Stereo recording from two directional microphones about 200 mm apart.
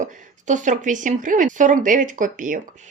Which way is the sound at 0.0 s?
40° right (ahead or behind).